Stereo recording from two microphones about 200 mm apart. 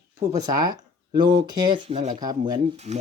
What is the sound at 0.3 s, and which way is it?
Speech, 20° right (ahead or behind).